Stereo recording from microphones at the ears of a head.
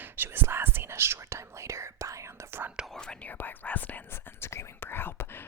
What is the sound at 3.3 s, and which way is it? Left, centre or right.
Speech, left.